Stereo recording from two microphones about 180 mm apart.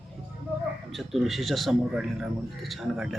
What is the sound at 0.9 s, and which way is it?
A man's voice, centre (ahead or behind).